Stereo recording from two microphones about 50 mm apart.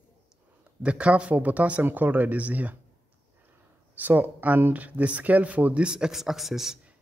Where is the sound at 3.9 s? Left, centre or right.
Right; by 6.8 s centre.